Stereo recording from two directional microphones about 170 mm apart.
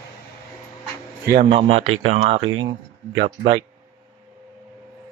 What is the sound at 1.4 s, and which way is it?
Speech, 35° right (ahead or behind).